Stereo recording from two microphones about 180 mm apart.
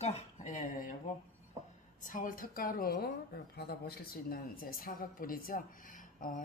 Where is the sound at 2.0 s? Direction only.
50° left (ahead or behind).